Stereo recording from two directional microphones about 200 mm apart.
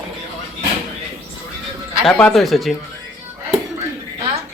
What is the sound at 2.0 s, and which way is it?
Speech, 5° left (ahead or behind).